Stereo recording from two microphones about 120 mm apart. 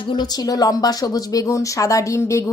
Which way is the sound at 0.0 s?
40° left (ahead or behind).